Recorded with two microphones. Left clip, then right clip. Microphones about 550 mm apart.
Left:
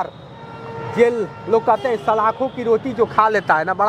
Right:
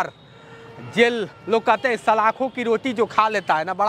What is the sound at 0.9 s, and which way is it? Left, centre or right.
A man's voice, right.